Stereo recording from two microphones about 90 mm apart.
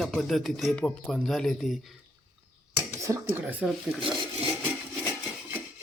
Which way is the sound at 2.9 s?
35° right (ahead or behind).